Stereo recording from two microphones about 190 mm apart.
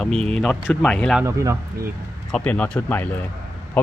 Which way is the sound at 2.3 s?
5° left (ahead or behind).